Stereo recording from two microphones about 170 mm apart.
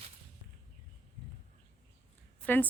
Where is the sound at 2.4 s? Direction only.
10° left (ahead or behind).